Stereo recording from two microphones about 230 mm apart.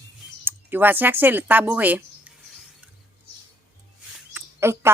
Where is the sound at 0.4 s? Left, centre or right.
Centre.